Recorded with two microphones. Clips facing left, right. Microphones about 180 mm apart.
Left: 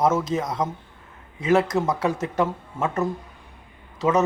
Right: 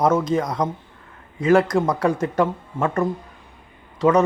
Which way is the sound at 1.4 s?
25° left (ahead or behind).